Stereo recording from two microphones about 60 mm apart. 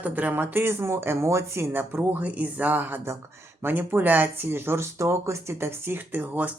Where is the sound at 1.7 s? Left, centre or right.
Right.